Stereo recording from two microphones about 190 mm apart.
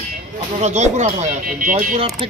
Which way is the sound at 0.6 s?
40° right (ahead or behind).